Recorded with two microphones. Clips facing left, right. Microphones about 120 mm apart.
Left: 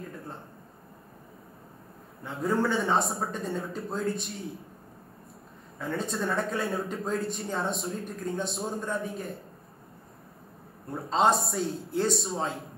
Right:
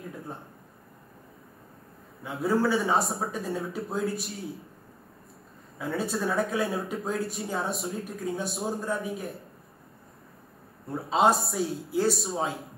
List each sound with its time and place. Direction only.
2.2 s speech: 5° right (ahead or behind)
5.8 s speech: 5° right (ahead or behind)
10.9 s speech: 5° right (ahead or behind)